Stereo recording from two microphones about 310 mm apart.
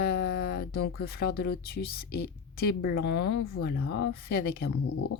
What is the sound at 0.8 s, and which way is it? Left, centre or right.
Speech, left.